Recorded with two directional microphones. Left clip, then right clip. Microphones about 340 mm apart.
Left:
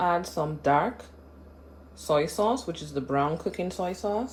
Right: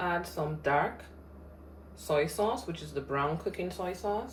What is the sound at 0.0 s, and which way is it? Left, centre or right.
Speech, centre.